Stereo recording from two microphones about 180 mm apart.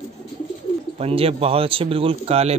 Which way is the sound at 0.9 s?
35° right (ahead or behind).